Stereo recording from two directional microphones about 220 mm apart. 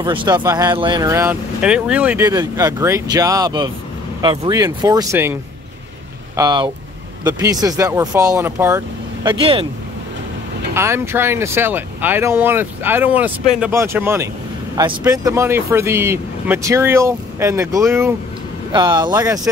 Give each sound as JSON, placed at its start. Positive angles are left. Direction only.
{"t": 0.0, "sound": "speech", "side_deg": -20}
{"t": 10.7, "sound": "speech", "side_deg": -10}